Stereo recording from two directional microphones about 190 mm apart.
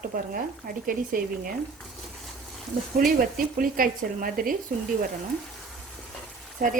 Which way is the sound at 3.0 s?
50° right (ahead or behind).